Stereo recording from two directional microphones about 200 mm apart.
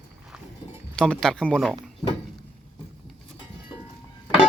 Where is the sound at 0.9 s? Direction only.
5° left (ahead or behind).